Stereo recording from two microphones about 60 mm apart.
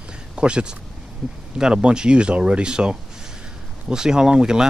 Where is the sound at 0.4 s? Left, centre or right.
Centre.